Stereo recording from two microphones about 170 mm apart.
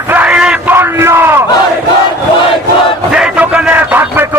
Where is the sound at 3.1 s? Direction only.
5° right (ahead or behind).